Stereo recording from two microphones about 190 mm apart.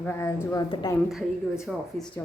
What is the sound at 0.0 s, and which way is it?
Speech, 10° left (ahead or behind).